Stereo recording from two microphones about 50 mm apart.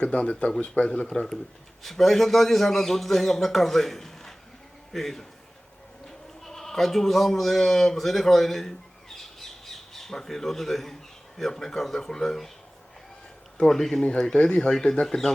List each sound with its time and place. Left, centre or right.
0.0 s speech: left
1.8 s a man's voice: centre
6.4 s speech: centre
13.6 s speech: centre